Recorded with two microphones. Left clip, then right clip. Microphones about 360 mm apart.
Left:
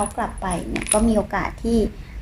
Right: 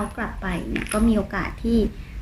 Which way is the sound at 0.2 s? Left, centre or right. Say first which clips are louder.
Left 4 dB; centre.